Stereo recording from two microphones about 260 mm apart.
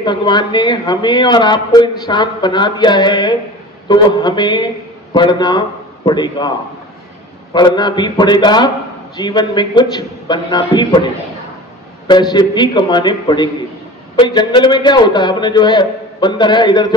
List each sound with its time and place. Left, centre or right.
0.0 s a man's voice: centre
7.5 s a man's voice: centre
12.1 s a man's voice: centre